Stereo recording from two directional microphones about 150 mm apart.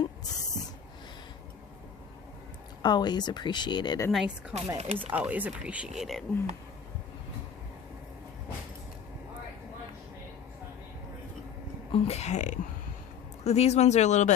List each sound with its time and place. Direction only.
2.8 s speech: 30° left (ahead or behind)
4.1 s speech: 5° right (ahead or behind)
4.8 s speech: 45° right (ahead or behind)
5.1 s speech: 10° right (ahead or behind)
11.9 s speech: 40° left (ahead or behind)